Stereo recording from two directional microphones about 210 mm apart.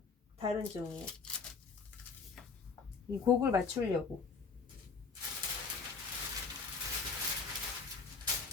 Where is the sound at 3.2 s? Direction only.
15° right (ahead or behind).